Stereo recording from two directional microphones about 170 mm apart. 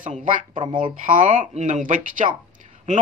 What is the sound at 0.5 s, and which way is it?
Speech, 30° right (ahead or behind).